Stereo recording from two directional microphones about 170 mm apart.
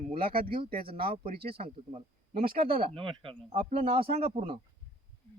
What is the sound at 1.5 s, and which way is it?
A man's voice, 35° right (ahead or behind).